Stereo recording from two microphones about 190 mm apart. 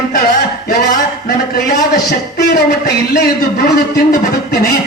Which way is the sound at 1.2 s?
50° left (ahead or behind).